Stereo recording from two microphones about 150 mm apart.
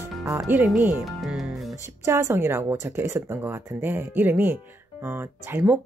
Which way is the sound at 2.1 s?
20° right (ahead or behind).